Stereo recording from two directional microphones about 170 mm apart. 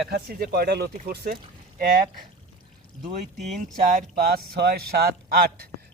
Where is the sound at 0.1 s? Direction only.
65° right (ahead or behind).